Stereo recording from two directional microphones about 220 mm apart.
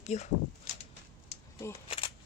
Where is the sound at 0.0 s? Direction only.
30° left (ahead or behind).